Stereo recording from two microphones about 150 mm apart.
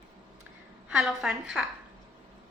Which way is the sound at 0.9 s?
5° right (ahead or behind).